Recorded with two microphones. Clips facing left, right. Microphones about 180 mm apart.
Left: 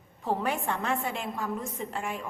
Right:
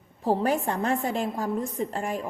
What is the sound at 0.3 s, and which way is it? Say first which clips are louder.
A woman's voice: right 5 dB; 35° right (ahead or behind).